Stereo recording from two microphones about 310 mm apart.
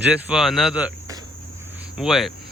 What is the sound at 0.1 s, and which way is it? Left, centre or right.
Speech, centre.